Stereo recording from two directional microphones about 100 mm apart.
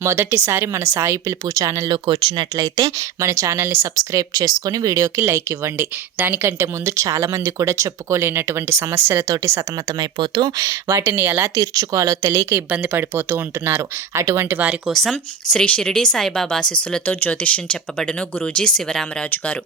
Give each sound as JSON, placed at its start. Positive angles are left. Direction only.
{"t": 0.0, "sound": "speech", "side_deg": -25}
{"t": 1.9, "sound": "speech", "side_deg": -50}
{"t": 10.0, "sound": "speech", "side_deg": -45}
{"t": 10.7, "sound": "speech", "side_deg": -30}
{"t": 11.6, "sound": "a woman's voice", "side_deg": -35}
{"t": 12.5, "sound": "speech", "side_deg": -15}
{"t": 14.8, "sound": "speech", "side_deg": 0}